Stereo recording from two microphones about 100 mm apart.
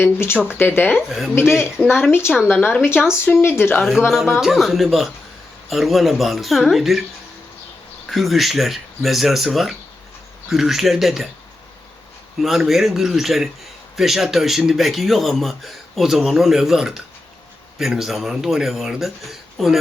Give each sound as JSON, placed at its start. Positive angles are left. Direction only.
{"t": 0.0, "sound": "speech", "side_deg": 25}
{"t": 2.9, "sound": "speech", "side_deg": -10}
{"t": 3.4, "sound": "speech", "side_deg": 25}
{"t": 3.8, "sound": "speech", "side_deg": 0}
{"t": 8.1, "sound": "speech", "side_deg": 0}
{"t": 12.4, "sound": "speech", "side_deg": 0}